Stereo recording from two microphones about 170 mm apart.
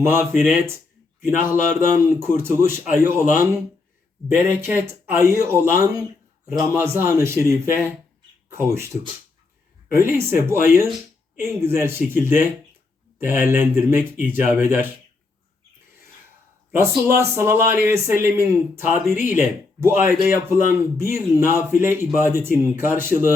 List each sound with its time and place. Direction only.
0.0 s speech: 15° right (ahead or behind)
16.7 s speech: 15° right (ahead or behind)